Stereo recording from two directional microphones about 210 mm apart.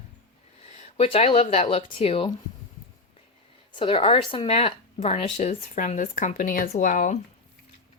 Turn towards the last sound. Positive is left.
turn(degrees=40)  # may be behind; listen again after turning